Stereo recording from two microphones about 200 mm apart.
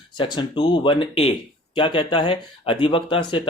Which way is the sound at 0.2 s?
25° left (ahead or behind).